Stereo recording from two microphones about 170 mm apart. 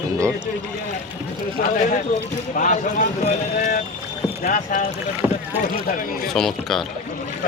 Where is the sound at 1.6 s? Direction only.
55° left (ahead or behind).